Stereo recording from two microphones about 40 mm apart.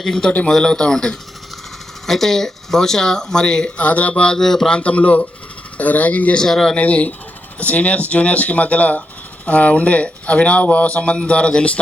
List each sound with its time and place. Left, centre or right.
0.0 s speech: centre
2.0 s speech: centre
3.8 s speech: left
4.1 s speech: left
4.4 s speech: centre
4.7 s speech: left
6.3 s speech: centre
6.7 s speech: left